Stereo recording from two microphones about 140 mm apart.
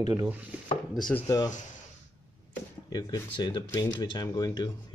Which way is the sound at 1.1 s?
25° left (ahead or behind).